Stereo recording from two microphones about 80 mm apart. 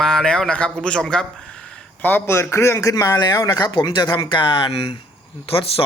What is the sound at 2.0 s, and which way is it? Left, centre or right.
A man's voice, left.